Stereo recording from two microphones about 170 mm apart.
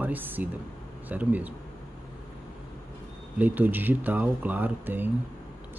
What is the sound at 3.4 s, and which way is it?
Speech, 10° right (ahead or behind).